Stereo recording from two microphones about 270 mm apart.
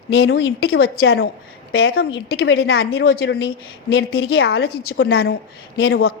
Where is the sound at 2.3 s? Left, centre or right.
Left.